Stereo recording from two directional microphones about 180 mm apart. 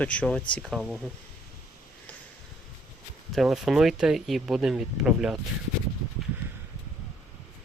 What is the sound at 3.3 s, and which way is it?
Speech, centre (ahead or behind).